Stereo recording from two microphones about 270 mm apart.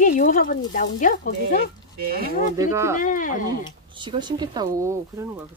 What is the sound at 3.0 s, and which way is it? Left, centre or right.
Speech, left.